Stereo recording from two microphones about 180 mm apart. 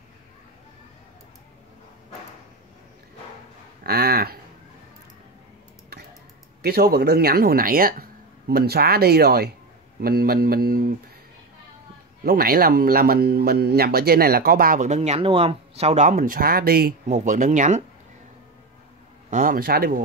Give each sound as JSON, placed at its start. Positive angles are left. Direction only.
{"t": 3.8, "sound": "speech", "side_deg": -60}
{"t": 6.6, "sound": "speech", "side_deg": -60}
{"t": 12.3, "sound": "speech", "side_deg": -55}
{"t": 19.3, "sound": "speech", "side_deg": -50}